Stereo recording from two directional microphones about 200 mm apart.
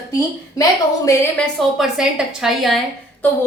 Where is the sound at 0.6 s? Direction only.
15° left (ahead or behind).